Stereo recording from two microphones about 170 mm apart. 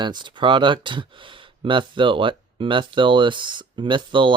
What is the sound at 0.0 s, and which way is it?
Speech, 25° right (ahead or behind).